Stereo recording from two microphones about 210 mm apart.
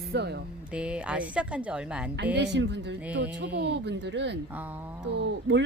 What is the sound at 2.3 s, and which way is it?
Speech, 55° right (ahead or behind).